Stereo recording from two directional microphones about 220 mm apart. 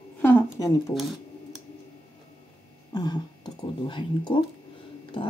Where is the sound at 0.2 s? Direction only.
10° left (ahead or behind).